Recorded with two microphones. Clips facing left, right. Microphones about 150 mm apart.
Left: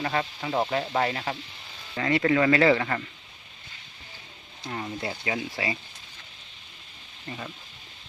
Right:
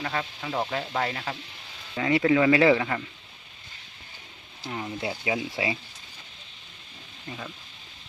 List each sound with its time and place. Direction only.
0.0 s speech: 5° left (ahead or behind)
2.0 s speech: 10° right (ahead or behind)
4.6 s speech: centre (ahead or behind)
7.3 s speech: 5° left (ahead or behind)